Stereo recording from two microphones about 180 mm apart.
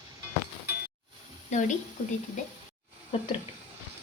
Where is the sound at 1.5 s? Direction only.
45° left (ahead or behind).